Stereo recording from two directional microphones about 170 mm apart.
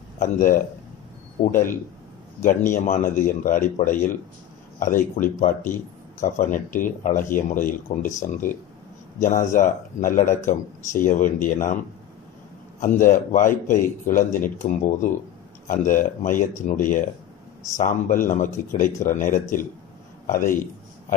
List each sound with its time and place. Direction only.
0.2 s speech: 55° left (ahead or behind)
12.8 s a man's voice: 50° left (ahead or behind)